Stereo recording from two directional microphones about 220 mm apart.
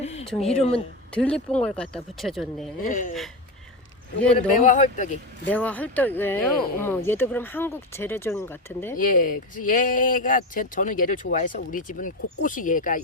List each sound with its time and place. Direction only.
0.0 s a sound: 30° left (ahead or behind)
0.3 s speech: centre (ahead or behind)
2.8 s speech: 35° left (ahead or behind)
4.4 s speech: 35° left (ahead or behind)
5.5 s speech: 5° left (ahead or behind)
9.0 s speech: 40° left (ahead or behind)